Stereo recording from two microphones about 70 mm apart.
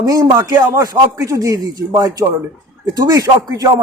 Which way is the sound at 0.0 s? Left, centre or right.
Right.